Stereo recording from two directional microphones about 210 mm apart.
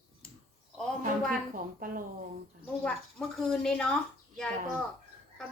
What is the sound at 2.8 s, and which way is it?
Speech, 5° left (ahead or behind).